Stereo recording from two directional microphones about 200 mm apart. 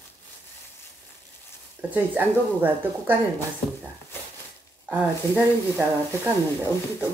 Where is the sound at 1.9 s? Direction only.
10° right (ahead or behind).